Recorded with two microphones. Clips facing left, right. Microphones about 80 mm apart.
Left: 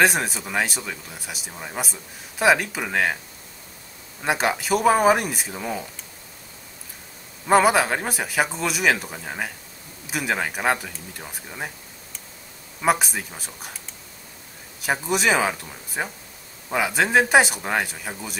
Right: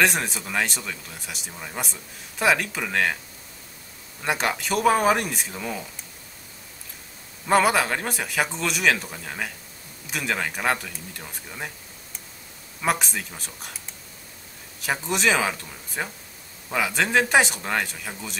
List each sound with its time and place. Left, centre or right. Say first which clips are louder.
0.0 s speech: left 3 dB; centre
1.5 s speech: left 2 dB; centre
1.8 s speech: left 2 dB; centre
4.2 s speech: left 3 dB; centre
7.4 s speech: left 3 dB; centre
12.8 s speech: left 4 dB; centre
14.8 s speech: left 2 dB; centre